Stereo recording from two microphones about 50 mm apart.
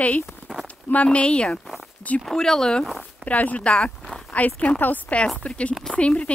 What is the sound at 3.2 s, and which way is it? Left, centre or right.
Speech, left.